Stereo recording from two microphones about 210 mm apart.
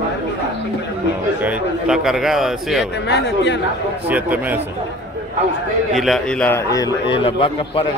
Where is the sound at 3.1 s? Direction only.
55° left (ahead or behind).